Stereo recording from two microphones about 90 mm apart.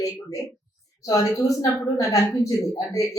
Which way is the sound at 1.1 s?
40° left (ahead or behind).